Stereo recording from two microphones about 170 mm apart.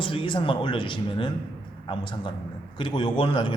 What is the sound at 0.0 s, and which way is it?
A man's voice, 30° left (ahead or behind).